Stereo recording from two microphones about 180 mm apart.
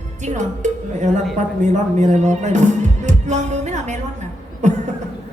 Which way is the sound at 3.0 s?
40° right (ahead or behind).